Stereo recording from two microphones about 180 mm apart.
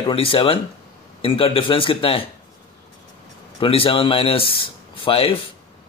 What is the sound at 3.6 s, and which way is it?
Speech, 30° left (ahead or behind).